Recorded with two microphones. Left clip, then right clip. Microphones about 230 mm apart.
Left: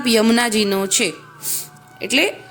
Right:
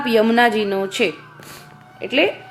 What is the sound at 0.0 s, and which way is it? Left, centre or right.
Speech, left.